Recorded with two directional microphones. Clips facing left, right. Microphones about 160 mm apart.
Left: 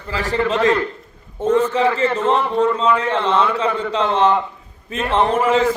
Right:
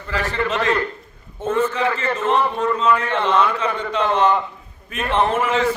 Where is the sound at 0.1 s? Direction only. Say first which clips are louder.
Left 3 dB; 35° left (ahead or behind).